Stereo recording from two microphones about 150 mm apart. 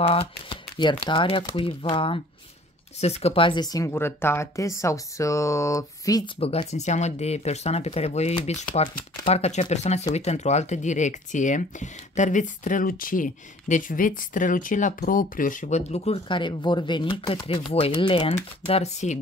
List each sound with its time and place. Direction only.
0.0 s speech: 40° left (ahead or behind); by 6.3 s 25° left (ahead or behind)
6.4 s speech: 45° left (ahead or behind)